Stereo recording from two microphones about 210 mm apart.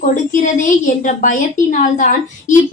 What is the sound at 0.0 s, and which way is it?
A woman's voice, 35° left (ahead or behind).